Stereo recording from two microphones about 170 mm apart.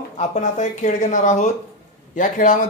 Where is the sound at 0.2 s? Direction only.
45° left (ahead or behind).